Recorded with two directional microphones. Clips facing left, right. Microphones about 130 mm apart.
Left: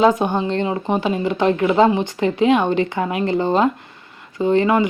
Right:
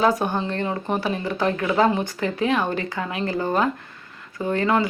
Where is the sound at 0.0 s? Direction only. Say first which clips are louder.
Left 5 dB; 20° left (ahead or behind).